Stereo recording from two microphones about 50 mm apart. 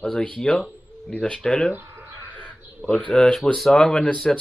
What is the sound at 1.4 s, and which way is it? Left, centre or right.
Speech, centre.